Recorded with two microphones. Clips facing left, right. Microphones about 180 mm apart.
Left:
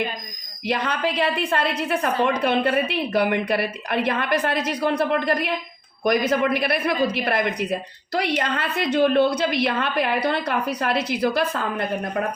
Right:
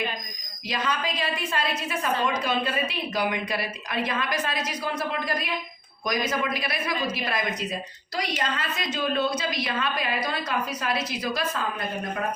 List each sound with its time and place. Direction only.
0.7 s speech: 60° left (ahead or behind)